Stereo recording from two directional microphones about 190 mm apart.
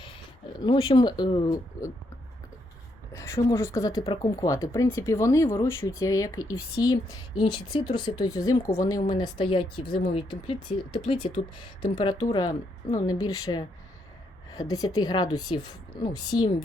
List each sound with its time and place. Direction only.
0.6 s speech: 25° left (ahead or behind)
3.1 s speech: 15° left (ahead or behind)
15.0 s speech: 20° left (ahead or behind)